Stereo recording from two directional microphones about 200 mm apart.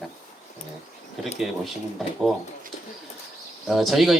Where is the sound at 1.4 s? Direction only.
Centre (ahead or behind).